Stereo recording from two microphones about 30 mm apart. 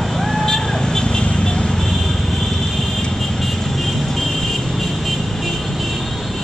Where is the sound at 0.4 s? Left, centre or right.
Centre.